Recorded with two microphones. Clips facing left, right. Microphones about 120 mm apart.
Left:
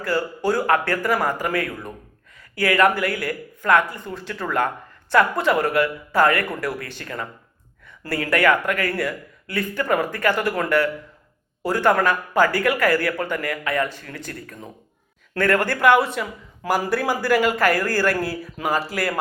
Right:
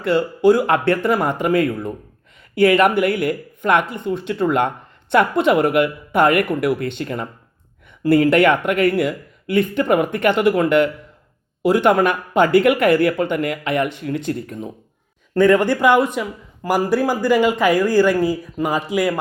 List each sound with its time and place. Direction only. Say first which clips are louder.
0.0 s speech: right 7 dB; 20° right (ahead or behind)